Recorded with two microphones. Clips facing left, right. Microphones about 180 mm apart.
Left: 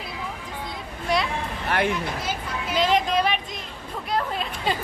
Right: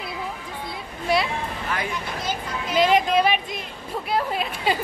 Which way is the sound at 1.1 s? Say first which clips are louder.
Right 2 dB; 5° right (ahead or behind).